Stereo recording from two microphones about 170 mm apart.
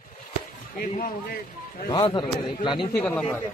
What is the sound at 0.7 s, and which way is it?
A man's voice, 55° left (ahead or behind).